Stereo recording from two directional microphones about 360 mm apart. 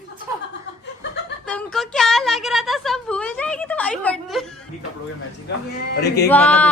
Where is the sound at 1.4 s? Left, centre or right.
Centre.